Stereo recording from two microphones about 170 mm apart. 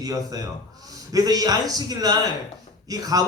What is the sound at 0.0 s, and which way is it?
A man's voice, 20° right (ahead or behind).